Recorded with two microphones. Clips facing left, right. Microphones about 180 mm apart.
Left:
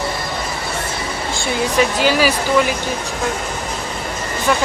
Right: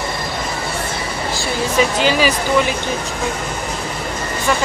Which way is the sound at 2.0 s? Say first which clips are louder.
Even; 10° left (ahead or behind).